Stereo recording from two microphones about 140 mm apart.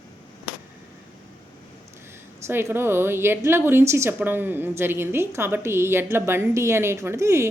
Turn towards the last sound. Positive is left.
turn(degrees=-20)  # may be behind; listen again after turning